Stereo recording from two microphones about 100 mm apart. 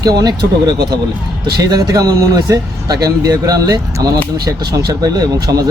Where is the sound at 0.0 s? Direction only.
40° right (ahead or behind).